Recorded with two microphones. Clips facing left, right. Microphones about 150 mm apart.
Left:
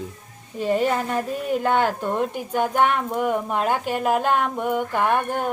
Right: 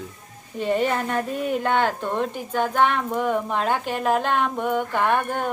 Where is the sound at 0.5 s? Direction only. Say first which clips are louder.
Left 1 dB; centre (ahead or behind).